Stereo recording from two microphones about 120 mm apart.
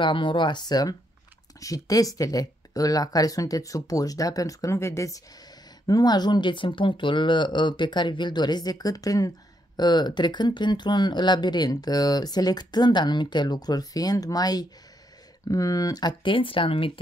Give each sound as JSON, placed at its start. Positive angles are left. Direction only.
{"t": 0.0, "sound": "speech", "side_deg": 45}